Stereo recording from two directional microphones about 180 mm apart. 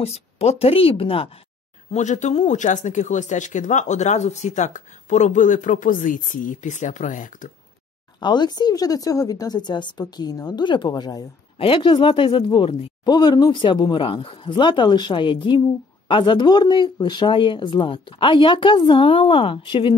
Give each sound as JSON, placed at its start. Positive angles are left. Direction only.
{"t": 0.0, "sound": "a woman's voice", "side_deg": 35}
{"t": 1.9, "sound": "speech", "side_deg": 40}
{"t": 8.2, "sound": "speech", "side_deg": 25}